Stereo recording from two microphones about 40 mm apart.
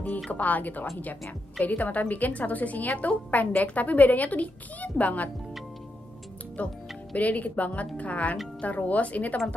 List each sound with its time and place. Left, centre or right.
0.3 s a woman's voice: left
6.6 s a woman's voice: left